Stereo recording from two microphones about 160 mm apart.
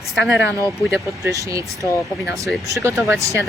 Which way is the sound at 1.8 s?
20° left (ahead or behind).